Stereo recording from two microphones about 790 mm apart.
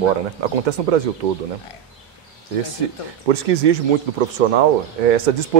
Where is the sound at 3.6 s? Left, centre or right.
Right.